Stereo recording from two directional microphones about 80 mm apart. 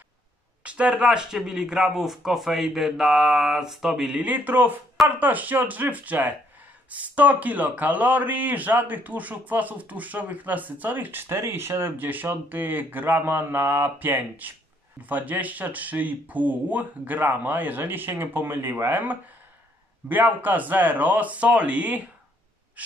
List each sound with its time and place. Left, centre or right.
0.7 s speech: centre
4.2 s speech: right